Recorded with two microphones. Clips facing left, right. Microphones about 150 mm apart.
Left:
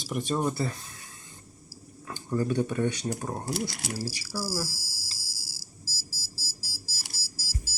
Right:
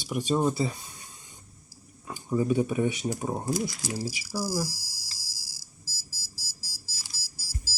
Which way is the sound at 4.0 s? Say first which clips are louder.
Right 2 dB; 15° right (ahead or behind).